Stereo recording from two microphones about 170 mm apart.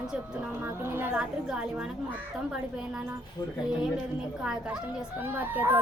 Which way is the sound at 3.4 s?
25° left (ahead or behind).